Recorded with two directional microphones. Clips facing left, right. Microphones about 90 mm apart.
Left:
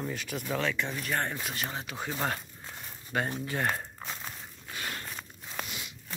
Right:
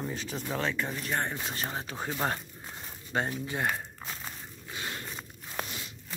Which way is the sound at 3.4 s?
20° right (ahead or behind).